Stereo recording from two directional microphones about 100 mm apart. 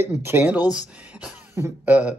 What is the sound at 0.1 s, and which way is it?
Speech, 25° right (ahead or behind).